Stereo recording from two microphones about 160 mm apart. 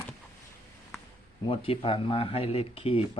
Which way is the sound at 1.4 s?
35° left (ahead or behind).